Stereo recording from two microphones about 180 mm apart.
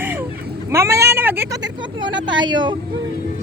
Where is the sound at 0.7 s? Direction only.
15° right (ahead or behind).